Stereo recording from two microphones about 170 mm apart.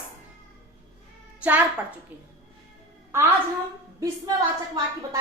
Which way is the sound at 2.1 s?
10° right (ahead or behind).